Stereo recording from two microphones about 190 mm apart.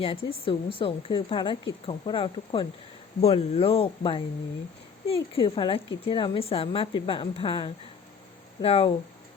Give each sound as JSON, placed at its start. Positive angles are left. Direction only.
{"t": 0.0, "sound": "speech", "side_deg": 30}